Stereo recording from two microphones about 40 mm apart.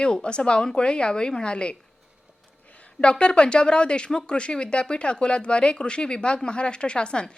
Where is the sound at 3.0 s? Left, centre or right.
Left.